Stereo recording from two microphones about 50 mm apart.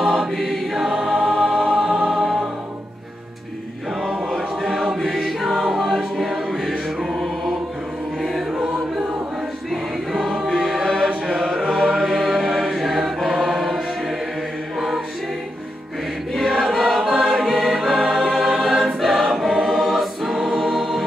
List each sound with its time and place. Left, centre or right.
0.4 s choir: centre
2.0 s music: centre
4.3 s choir: centre
7.0 s music: centre
8.2 s choir: centre
8.5 s choir: centre
10.1 s choir: centre
11.1 s chant: right
11.7 s choir: centre
16.6 s choir: centre